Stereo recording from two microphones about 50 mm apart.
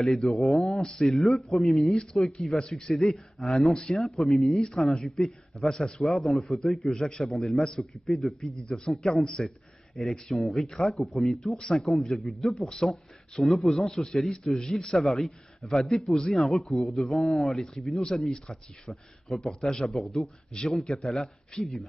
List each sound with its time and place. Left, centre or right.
0.0 s a man's voice: centre
0.4 s a man's voice: centre
5.7 s a man's voice: centre
15.0 s a man's voice: centre
21.5 s a man's voice: centre